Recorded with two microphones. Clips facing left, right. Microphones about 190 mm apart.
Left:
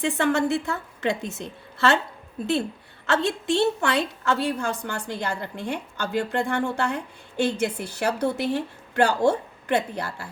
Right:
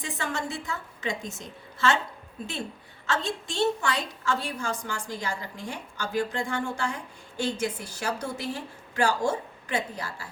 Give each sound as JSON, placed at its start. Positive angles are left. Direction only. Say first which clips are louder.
{"t": 0.0, "sound": "a woman's voice", "louder": "left 10 dB", "side_deg": 65}
{"t": 3.1, "sound": "a woman's voice", "louder": "left 8 dB", "side_deg": 65}